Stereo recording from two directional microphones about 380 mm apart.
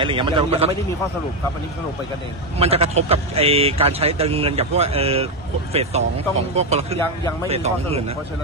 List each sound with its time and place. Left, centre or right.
0.0 s speech: centre
2.6 s speech: centre